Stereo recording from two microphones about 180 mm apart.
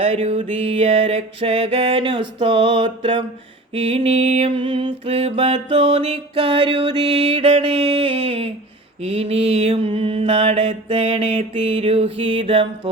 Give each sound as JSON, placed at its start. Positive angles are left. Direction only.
{"t": 0.0, "sound": "mantra", "side_deg": -35}